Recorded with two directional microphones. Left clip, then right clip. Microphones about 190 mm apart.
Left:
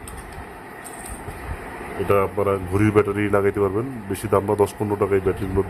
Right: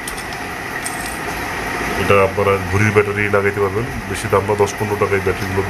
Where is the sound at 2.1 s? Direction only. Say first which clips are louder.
Right 6 dB; 65° left (ahead or behind).